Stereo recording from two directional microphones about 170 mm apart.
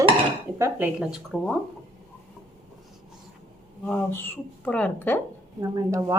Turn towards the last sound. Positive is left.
turn(degrees=-20)  # may be behind; listen again after turning